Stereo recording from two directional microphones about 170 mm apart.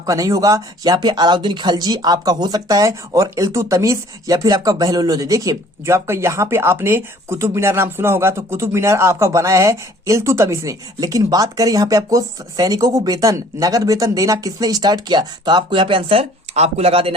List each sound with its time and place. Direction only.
0.0 s speech: 20° right (ahead or behind)